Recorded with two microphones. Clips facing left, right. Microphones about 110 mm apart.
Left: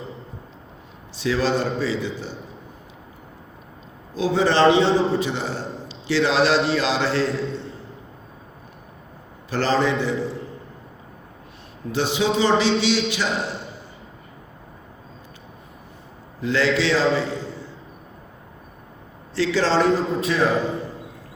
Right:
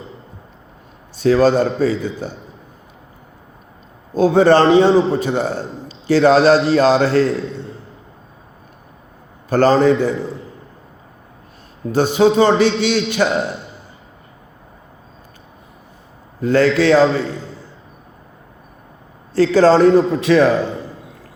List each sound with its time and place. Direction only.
1.2 s a man's voice: 45° right (ahead or behind)
4.1 s a man's voice: 50° right (ahead or behind)
9.5 s a man's voice: 45° right (ahead or behind)
11.9 s a man's voice: 45° right (ahead or behind)
16.4 s a man's voice: 50° right (ahead or behind)
19.3 s a man's voice: 45° right (ahead or behind)
20.2 s a man's voice: 80° right